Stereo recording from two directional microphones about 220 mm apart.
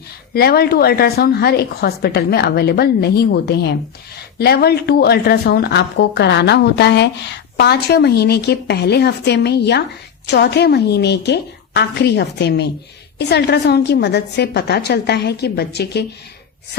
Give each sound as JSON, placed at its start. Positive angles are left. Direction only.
{"t": 0.3, "sound": "a woman's voice", "side_deg": 45}